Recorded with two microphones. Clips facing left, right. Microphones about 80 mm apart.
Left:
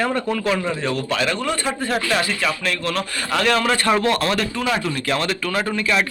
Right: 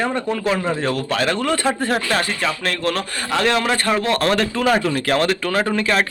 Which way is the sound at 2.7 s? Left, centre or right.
Right.